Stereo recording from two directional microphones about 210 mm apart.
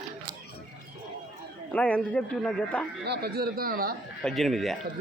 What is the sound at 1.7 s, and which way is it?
Speech, 5° left (ahead or behind).